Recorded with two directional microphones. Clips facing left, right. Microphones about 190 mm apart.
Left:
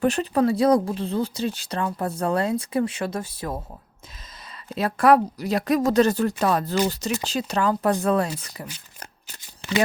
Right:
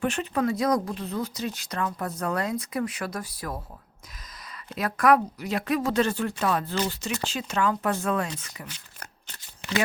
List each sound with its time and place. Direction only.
0.0 s speech: 35° left (ahead or behind)
4.7 s speech: 30° left (ahead or behind)
8.6 s shuffling cards: 10° left (ahead or behind)